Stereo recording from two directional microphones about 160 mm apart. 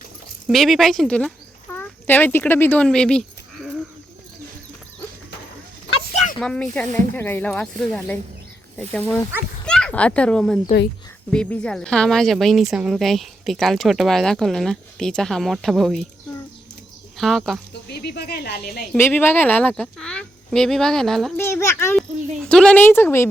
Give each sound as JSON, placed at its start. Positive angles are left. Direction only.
{"t": 0.4, "sound": "a woman's voice", "side_deg": 0}
{"t": 6.4, "sound": "a woman's voice", "side_deg": 5}
{"t": 17.2, "sound": "a woman's voice", "side_deg": 0}
{"t": 17.9, "sound": "speech", "side_deg": 85}
{"t": 19.1, "sound": "a woman's voice", "side_deg": 10}
{"t": 21.3, "sound": "speech", "side_deg": 15}
{"t": 21.9, "sound": "speech", "side_deg": 0}